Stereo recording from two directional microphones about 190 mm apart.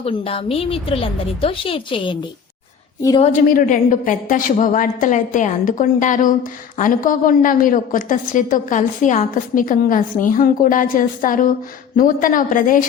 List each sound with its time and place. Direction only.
0.0 s a woman's voice: 30° left (ahead or behind)
3.2 s a woman's voice: 35° left (ahead or behind)
3.4 s a woman's voice: 50° left (ahead or behind)